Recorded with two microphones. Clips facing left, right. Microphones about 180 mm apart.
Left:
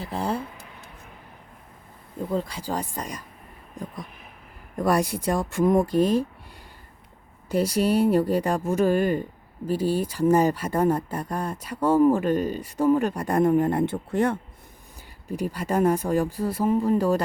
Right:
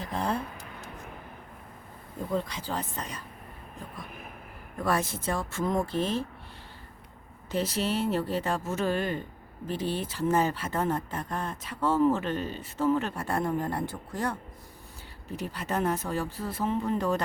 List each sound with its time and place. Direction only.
0.2 s speech: 10° left (ahead or behind)
2.5 s speech: 10° left (ahead or behind)
4.8 s speech: 15° left (ahead or behind)
7.5 s speech: 10° left (ahead or behind)
15.3 s speech: 10° left (ahead or behind)